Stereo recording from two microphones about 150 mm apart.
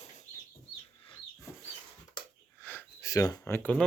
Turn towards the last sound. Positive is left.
turn(degrees=10)  # may be behind; listen again after turning